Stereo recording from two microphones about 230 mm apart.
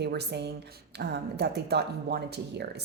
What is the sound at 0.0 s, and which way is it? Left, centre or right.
A woman's voice, right.